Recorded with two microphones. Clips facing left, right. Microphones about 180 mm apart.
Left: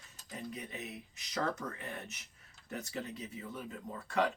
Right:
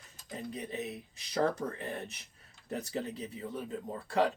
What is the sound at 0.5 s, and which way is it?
Speech, 35° right (ahead or behind).